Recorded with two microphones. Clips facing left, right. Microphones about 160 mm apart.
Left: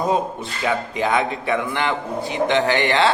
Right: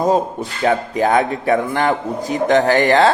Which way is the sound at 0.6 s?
40° right (ahead or behind).